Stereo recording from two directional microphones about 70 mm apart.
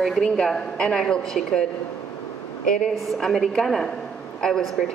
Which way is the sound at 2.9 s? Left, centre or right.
Centre.